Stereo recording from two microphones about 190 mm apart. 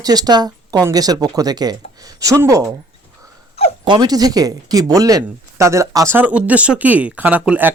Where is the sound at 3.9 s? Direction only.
20° right (ahead or behind).